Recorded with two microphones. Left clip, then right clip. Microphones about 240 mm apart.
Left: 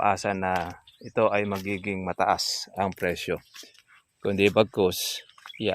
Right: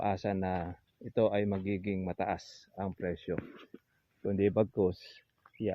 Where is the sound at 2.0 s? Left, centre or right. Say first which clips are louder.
Left 14 dB; left.